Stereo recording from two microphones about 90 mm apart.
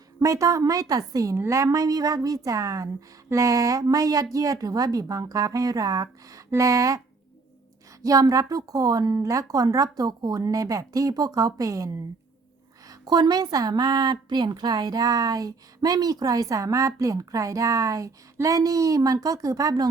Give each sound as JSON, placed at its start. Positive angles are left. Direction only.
{"t": 0.2, "sound": "a woman's voice", "side_deg": -40}
{"t": 8.0, "sound": "a woman's voice", "side_deg": -40}
{"t": 12.9, "sound": "a woman's voice", "side_deg": -50}